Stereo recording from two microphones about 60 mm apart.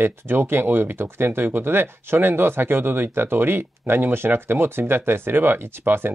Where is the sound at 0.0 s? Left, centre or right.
Right.